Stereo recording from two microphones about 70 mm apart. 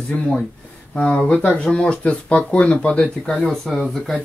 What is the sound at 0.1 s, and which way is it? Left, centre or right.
Speech, centre.